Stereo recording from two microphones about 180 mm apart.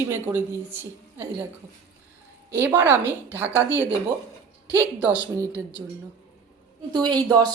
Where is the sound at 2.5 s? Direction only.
15° right (ahead or behind).